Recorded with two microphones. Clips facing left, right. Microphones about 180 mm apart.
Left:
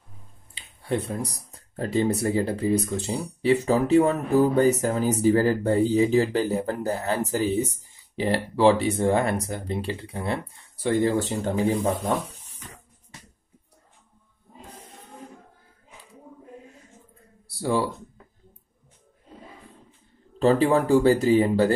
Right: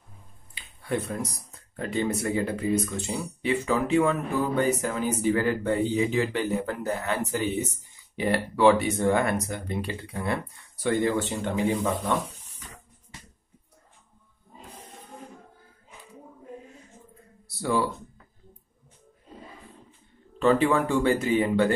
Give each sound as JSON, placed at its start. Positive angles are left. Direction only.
{"t": 0.6, "sound": "speech", "side_deg": 30}
{"t": 17.5, "sound": "a sound", "side_deg": 30}
{"t": 20.3, "sound": "speech", "side_deg": 35}